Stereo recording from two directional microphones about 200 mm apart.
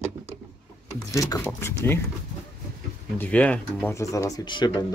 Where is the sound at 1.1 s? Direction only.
15° left (ahead or behind).